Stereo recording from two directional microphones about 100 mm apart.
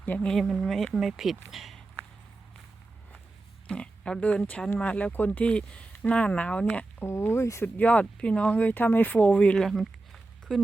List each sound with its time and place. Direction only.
0.0 s speech: 20° left (ahead or behind)
0.3 s speech: centre (ahead or behind)
3.7 s speech: 10° left (ahead or behind)
7.0 s speech: 25° left (ahead or behind)
7.8 s speech: 15° left (ahead or behind)
9.6 s a sound: centre (ahead or behind)